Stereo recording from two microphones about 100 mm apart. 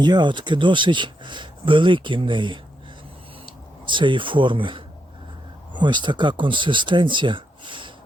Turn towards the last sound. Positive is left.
turn(degrees=-55)  # may be behind; listen again after turning